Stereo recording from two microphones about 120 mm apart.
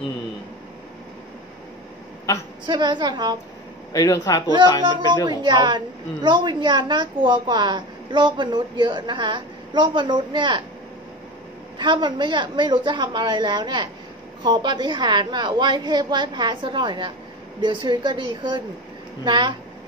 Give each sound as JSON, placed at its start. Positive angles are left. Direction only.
{"t": 2.3, "sound": "speech", "side_deg": 25}
{"t": 2.6, "sound": "a woman's voice", "side_deg": -40}
{"t": 3.9, "sound": "speech", "side_deg": 30}
{"t": 4.8, "sound": "a woman's voice", "side_deg": -35}
{"t": 11.8, "sound": "a woman's voice", "side_deg": -40}